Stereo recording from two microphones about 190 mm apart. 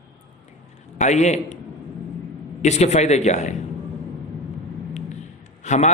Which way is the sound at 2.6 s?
35° left (ahead or behind).